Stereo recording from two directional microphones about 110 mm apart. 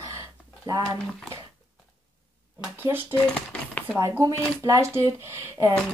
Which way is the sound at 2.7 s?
20° right (ahead or behind).